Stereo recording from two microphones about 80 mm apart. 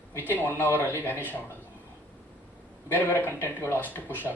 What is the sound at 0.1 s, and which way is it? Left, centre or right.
Speech, left.